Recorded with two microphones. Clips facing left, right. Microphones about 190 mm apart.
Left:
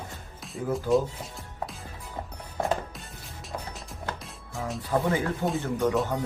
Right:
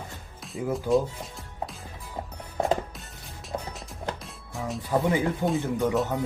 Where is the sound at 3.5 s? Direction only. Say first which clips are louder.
Right 3 dB; 30° right (ahead or behind).